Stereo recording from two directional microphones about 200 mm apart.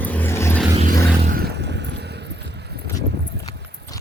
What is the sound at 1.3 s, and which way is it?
Vehicle, 50° right (ahead or behind).